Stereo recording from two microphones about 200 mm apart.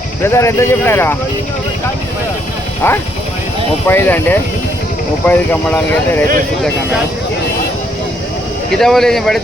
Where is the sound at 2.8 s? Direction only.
10° left (ahead or behind).